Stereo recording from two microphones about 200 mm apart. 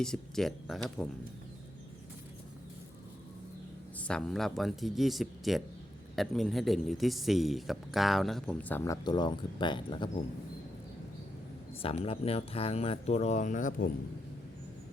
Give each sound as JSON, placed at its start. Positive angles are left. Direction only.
{"t": 0.0, "sound": "a man's voice", "side_deg": 0}
{"t": 3.9, "sound": "a man's voice", "side_deg": 5}
{"t": 11.7, "sound": "speech", "side_deg": 30}